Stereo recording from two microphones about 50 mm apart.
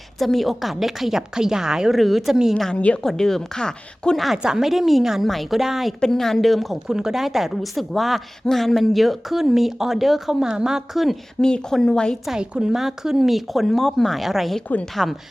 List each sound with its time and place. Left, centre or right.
0.2 s a woman's voice: centre
2.0 s a woman's voice: centre
2.3 s a woman's voice: centre
2.7 s a woman's voice: left
3.0 s speech: centre
4.4 s a woman's voice: centre
6.0 s a woman's voice: centre
6.8 s a woman's voice: centre
11.3 s speech: centre
12.4 s a woman's voice: centre
15.0 s speech: centre